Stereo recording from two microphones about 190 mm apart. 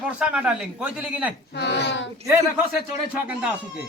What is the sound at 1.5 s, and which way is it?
Speech, 65° left (ahead or behind).